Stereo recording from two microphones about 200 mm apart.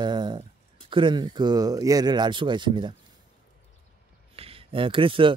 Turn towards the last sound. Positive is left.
turn(degrees=-25)  # may be behind; listen again after turning